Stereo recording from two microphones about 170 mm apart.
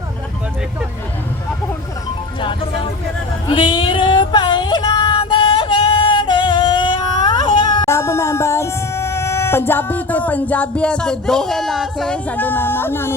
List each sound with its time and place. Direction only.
2.4 s music: 30° left (ahead or behind)
3.5 s female singing: 30° left (ahead or behind); by 13.1 s 15° left (ahead or behind)